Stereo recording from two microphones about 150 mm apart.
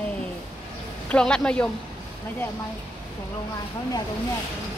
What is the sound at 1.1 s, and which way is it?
Speech, 5° left (ahead or behind).